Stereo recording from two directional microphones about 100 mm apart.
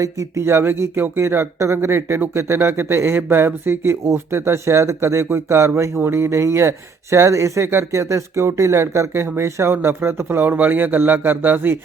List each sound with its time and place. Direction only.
0.0 s speech: 30° right (ahead or behind)